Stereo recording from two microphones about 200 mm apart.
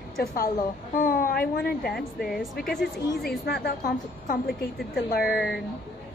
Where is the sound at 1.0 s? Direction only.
45° left (ahead or behind).